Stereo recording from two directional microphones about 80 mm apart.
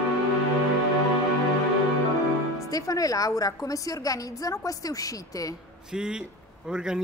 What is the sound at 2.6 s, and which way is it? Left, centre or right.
A woman's voice, left.